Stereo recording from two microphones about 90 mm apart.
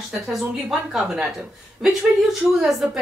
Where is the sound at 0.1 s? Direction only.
5° right (ahead or behind).